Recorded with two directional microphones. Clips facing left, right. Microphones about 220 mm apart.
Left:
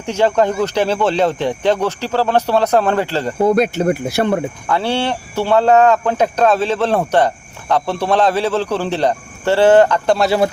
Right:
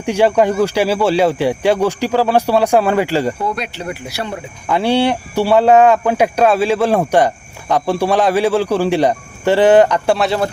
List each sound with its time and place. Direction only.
0.0 s speech: 15° right (ahead or behind)
3.4 s speech: 45° left (ahead or behind)
4.7 s speech: 15° right (ahead or behind)